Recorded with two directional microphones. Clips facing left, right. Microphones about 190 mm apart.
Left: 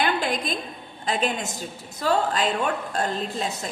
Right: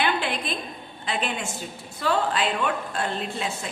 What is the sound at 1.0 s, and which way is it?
A woman's voice, 40° left (ahead or behind).